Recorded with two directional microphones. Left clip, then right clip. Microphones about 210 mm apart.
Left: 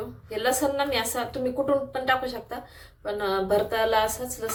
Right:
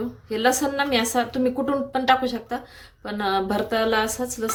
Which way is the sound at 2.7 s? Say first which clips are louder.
Left 2 dB; 50° right (ahead or behind).